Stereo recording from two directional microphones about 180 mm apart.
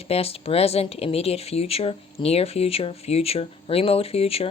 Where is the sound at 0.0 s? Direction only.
35° left (ahead or behind).